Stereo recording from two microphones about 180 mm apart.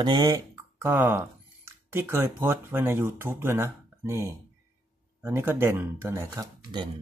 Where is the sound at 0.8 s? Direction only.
10° right (ahead or behind).